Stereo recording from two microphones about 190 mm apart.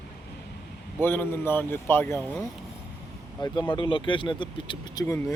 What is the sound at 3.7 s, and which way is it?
Speech, 25° left (ahead or behind).